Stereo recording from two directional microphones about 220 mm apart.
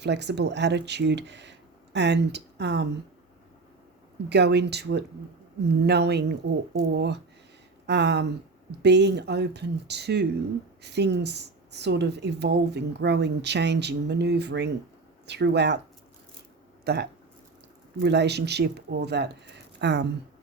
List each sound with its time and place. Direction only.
0.0 s speech: 50° right (ahead or behind)
4.3 s speech: 50° right (ahead or behind)
16.8 s speech: 50° right (ahead or behind)